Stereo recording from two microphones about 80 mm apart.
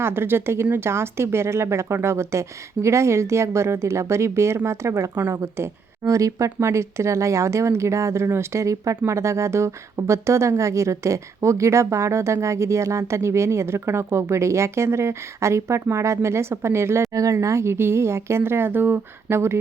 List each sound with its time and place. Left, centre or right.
0.0 s a woman's voice: right